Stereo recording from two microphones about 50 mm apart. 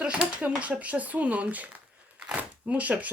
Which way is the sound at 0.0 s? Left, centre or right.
Centre.